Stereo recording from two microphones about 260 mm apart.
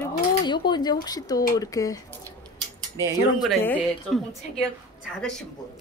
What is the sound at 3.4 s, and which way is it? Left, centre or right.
Speech, centre.